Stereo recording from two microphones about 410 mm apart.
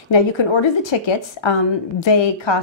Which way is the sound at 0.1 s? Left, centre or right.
Left.